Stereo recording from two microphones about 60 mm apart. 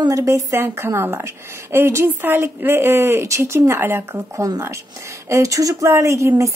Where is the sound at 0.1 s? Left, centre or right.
Right.